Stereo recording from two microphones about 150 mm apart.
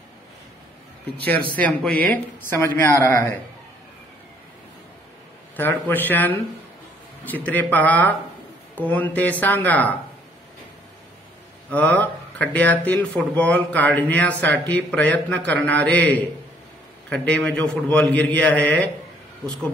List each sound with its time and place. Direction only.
1.6 s speech: 10° left (ahead or behind)
5.6 s speech: 15° left (ahead or behind)
11.7 s speech: 10° left (ahead or behind)